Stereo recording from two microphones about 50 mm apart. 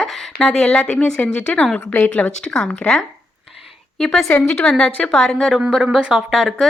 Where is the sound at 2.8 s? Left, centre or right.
Centre.